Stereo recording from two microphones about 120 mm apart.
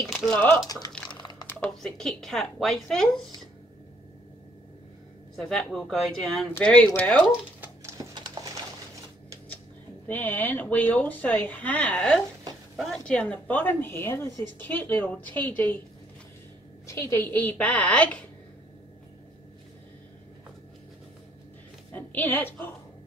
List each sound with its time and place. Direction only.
0.3 s a woman's voice: 15° left (ahead or behind)
1.1 s a sound: 40° left (ahead or behind)
1.7 s speech: 5° left (ahead or behind)
5.3 s a woman's voice: centre (ahead or behind)
10.0 s a woman's voice: 15° left (ahead or behind)
16.8 s a woman's voice: 25° left (ahead or behind)
21.9 s speech: 15° left (ahead or behind)